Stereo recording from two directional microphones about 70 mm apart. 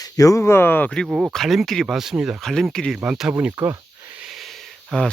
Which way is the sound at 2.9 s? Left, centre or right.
Centre.